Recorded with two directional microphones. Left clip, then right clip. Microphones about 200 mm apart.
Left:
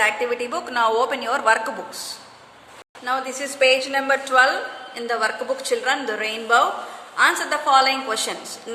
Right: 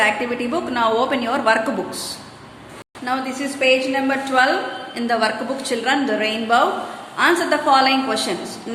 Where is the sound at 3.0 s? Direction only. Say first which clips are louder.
Right 1 dB; 20° left (ahead or behind).